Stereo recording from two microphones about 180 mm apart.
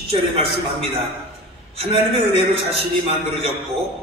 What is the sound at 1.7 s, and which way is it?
A man's voice, 30° right (ahead or behind).